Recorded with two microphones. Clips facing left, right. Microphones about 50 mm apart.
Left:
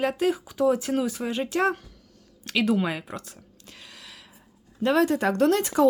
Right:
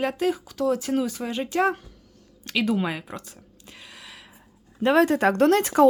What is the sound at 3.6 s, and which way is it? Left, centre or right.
Gasp, centre.